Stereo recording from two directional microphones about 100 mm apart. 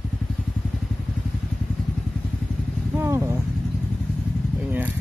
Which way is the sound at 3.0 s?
30° right (ahead or behind).